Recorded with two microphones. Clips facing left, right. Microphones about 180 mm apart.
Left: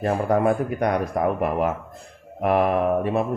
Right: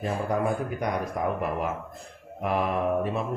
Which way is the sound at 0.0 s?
65° left (ahead or behind).